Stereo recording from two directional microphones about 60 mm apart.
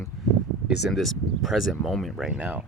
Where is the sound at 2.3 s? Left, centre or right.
Right.